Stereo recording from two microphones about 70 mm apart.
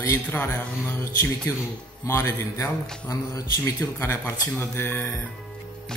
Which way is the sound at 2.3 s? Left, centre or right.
Left.